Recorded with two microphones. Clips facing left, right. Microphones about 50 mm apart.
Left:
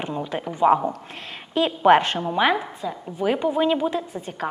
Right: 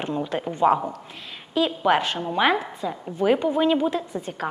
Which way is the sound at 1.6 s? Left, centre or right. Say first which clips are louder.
Left 4 dB; left.